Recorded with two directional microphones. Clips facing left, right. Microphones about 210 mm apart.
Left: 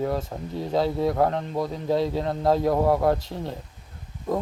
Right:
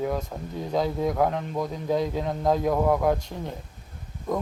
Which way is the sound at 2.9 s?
35° left (ahead or behind).